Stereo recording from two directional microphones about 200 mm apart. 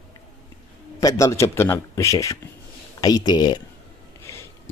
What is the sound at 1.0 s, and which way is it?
Speech, 15° left (ahead or behind).